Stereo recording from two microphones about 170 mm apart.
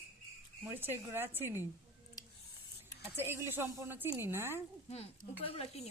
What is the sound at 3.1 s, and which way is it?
A woman's voice, 15° right (ahead or behind).